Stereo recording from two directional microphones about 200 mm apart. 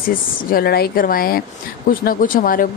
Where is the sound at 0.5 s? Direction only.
50° left (ahead or behind).